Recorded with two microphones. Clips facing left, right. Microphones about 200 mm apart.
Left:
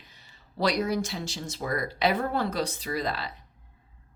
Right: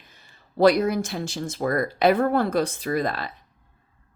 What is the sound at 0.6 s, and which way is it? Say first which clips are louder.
Speech: right 8 dB; 50° right (ahead or behind).